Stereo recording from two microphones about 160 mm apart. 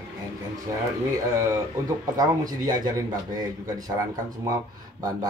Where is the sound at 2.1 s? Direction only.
25° right (ahead or behind).